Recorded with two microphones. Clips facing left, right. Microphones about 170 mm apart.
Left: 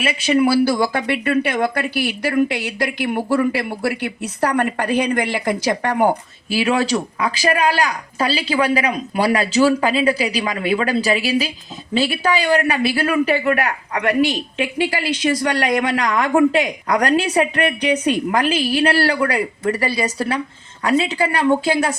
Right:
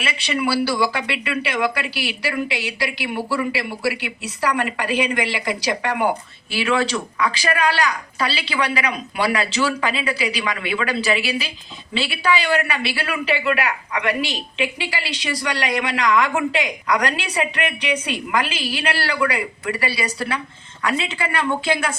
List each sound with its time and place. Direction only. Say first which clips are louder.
0.0 s a woman's voice: left 7 dB; 45° left (ahead or behind)